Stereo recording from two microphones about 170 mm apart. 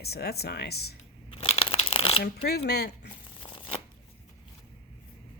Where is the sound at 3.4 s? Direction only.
30° left (ahead or behind).